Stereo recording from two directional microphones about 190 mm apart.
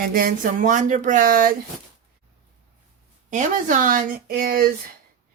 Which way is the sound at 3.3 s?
40° right (ahead or behind).